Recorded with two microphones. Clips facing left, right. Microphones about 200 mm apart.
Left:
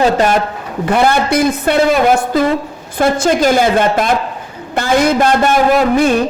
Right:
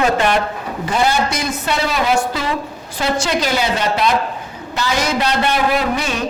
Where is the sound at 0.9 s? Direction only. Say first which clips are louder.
Left 5 dB; 60° left (ahead or behind).